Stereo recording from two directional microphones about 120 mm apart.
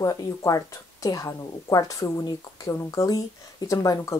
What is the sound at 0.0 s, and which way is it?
A woman's voice, 30° left (ahead or behind).